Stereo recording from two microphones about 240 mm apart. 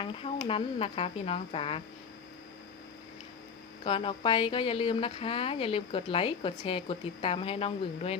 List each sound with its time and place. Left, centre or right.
0.0 s speech: left
3.8 s speech: left